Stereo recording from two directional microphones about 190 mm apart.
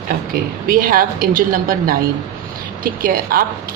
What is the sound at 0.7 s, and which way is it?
A woman's voice, 50° right (ahead or behind).